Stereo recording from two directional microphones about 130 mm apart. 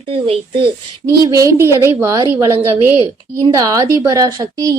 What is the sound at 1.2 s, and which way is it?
A woman's voice, 25° right (ahead or behind).